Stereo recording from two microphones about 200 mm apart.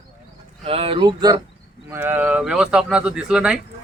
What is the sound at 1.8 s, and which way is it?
A man's voice, 10° right (ahead or behind).